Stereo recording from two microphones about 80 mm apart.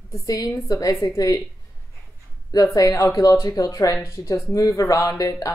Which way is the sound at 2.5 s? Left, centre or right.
Left.